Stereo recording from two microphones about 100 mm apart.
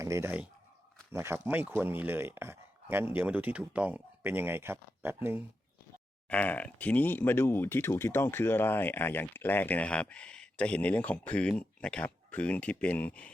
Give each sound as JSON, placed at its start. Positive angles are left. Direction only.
{"t": 0.0, "sound": "speech", "side_deg": -30}
{"t": 6.2, "sound": "speech", "side_deg": 15}